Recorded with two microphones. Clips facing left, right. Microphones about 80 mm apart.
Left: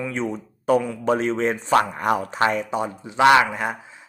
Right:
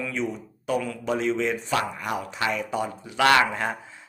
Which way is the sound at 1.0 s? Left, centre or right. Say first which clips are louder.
Left 4 dB; left.